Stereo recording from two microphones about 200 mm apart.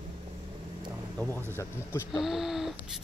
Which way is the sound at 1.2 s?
10° left (ahead or behind).